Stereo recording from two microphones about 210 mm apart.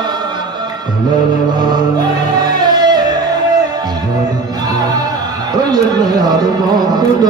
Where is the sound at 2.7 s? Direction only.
20° right (ahead or behind).